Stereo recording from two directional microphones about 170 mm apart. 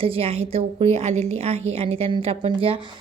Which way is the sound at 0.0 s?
35° right (ahead or behind).